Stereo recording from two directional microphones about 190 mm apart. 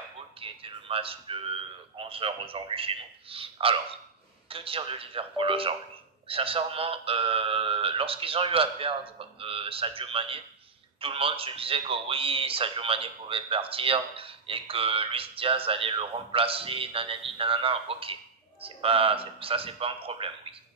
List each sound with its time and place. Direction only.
0.4 s a man's voice: 30° right (ahead or behind)